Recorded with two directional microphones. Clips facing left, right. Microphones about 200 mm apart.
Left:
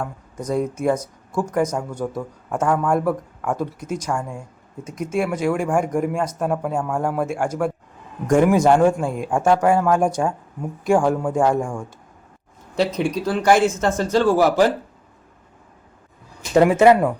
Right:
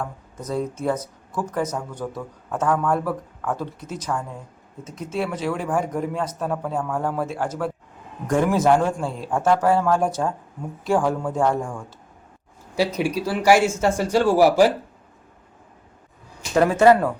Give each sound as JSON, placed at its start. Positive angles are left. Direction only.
{"t": 0.0, "sound": "speech", "side_deg": 10}
{"t": 12.7, "sound": "speech", "side_deg": -5}
{"t": 16.6, "sound": "speech", "side_deg": 20}